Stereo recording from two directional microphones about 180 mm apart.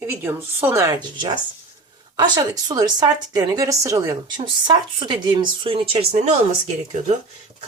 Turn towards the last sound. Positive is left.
turn(degrees=-40)  # may be behind; listen again after turning